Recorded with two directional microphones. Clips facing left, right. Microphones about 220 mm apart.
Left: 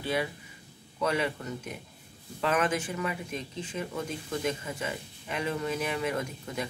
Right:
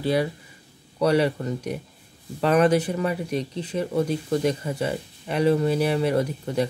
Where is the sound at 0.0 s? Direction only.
35° right (ahead or behind).